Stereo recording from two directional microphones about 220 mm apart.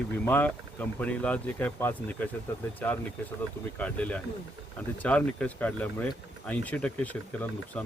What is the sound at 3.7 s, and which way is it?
Speech, 5° left (ahead or behind).